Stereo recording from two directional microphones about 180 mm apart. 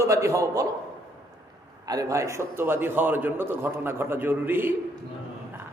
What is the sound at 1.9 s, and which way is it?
A man's voice, 20° right (ahead or behind).